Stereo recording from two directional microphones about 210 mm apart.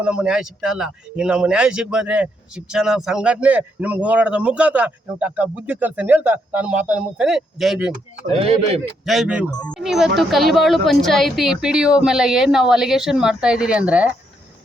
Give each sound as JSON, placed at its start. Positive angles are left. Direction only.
{"t": 0.0, "sound": "speech", "side_deg": -5}
{"t": 8.4, "sound": "speech", "side_deg": -30}
{"t": 9.0, "sound": "speech", "side_deg": 0}